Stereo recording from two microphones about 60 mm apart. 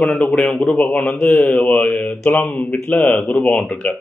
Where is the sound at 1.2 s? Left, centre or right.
Centre.